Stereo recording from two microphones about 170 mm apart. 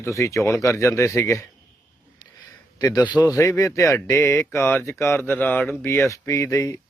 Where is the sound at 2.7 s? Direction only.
20° left (ahead or behind).